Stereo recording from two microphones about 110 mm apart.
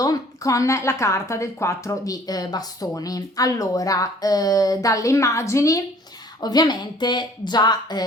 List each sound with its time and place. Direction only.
0.0 s a woman's voice: 30° left (ahead or behind)